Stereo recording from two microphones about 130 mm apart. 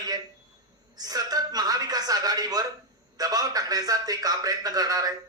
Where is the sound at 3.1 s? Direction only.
30° right (ahead or behind).